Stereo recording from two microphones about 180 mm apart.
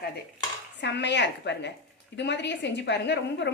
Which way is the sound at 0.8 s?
70° left (ahead or behind).